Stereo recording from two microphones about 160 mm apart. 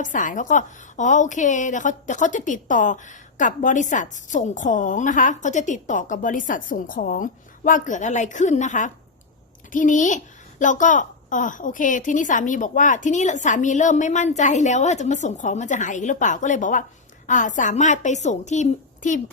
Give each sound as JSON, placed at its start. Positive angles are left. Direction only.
{"t": 0.0, "sound": "a woman's voice", "side_deg": 55}